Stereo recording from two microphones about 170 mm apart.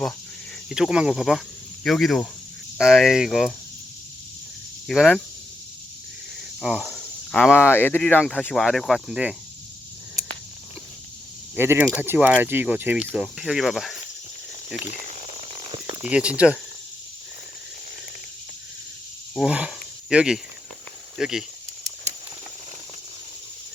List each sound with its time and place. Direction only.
0.7 s speech: 5° right (ahead or behind)
4.9 s speech: 5° left (ahead or behind)
6.6 s speech: 5° right (ahead or behind)
7.5 s speech: 15° left (ahead or behind); by 9.3 s 5° right (ahead or behind)
11.5 s speech: 15° right (ahead or behind)
15.0 s a sound: 40° right (ahead or behind)
16.0 s speech: 5° right (ahead or behind)
19.3 s speech: 5° right (ahead or behind)